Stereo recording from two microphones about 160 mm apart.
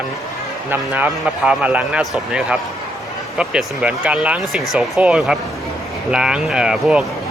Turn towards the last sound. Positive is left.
turn(degrees=0)  # may be behind; listen again after turning